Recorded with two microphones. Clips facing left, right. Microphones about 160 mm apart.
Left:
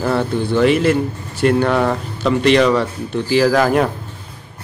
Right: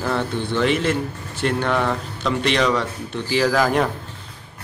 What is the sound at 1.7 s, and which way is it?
Speech, 35° left (ahead or behind).